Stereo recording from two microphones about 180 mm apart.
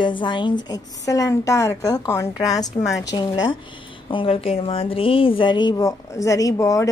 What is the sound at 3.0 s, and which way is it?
A woman's voice, 20° left (ahead or behind).